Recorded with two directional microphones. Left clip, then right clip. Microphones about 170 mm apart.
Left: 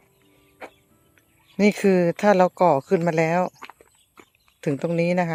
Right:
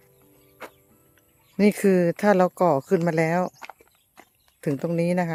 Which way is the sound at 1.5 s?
15° right (ahead or behind).